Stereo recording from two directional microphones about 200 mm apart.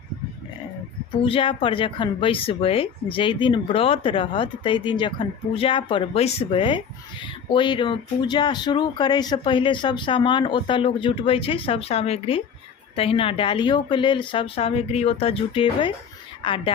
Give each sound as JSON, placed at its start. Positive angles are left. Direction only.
{"t": 1.2, "sound": "speech", "side_deg": 25}